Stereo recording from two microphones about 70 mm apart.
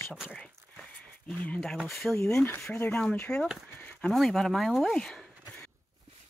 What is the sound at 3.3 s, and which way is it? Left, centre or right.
Speech, centre.